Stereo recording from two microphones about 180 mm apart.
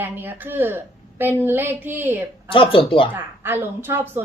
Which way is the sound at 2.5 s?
30° left (ahead or behind).